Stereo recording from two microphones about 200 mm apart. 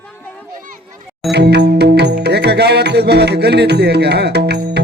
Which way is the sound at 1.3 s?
55° right (ahead or behind).